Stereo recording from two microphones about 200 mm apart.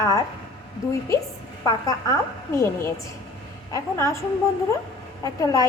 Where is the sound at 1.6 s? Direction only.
15° left (ahead or behind).